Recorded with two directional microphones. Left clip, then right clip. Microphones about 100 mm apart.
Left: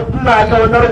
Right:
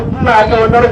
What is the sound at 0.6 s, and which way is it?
Speech, 30° left (ahead or behind).